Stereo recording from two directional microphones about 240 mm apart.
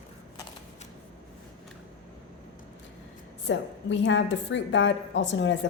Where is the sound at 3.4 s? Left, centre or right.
Left.